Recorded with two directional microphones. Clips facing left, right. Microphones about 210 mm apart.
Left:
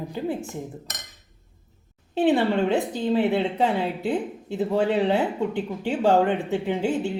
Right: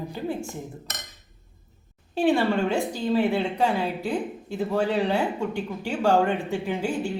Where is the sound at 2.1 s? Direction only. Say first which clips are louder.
Left 1 dB; 20° left (ahead or behind).